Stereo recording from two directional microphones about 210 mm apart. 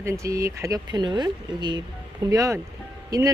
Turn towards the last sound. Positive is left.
turn(degrees=-15)  # may be behind; listen again after turning